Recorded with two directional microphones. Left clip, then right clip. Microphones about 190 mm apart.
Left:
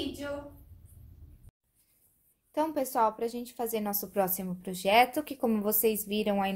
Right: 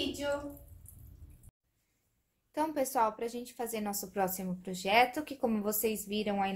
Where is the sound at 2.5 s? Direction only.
20° left (ahead or behind).